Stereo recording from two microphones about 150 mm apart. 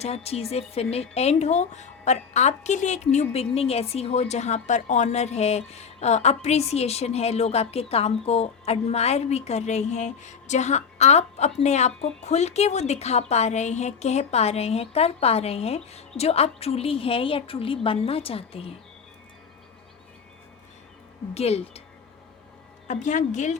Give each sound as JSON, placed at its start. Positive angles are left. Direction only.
{"t": 0.0, "sound": "a woman's voice", "side_deg": 45}
{"t": 21.3, "sound": "speech", "side_deg": 45}
{"t": 22.9, "sound": "speech", "side_deg": 55}